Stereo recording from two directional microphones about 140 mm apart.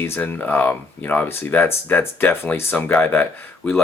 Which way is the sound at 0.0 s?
10° left (ahead or behind).